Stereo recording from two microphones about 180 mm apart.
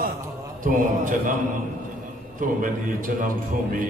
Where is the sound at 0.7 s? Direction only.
45° right (ahead or behind).